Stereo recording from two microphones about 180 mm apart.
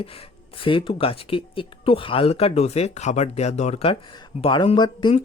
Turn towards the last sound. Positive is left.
turn(degrees=25)  # may be behind; listen again after turning